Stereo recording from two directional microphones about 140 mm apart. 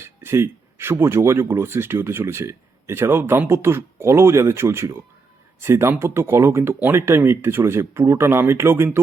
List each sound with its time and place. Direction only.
0.0 s speech: 20° right (ahead or behind)